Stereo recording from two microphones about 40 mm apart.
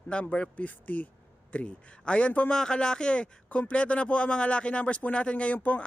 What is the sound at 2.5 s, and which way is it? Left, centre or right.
Speech, centre.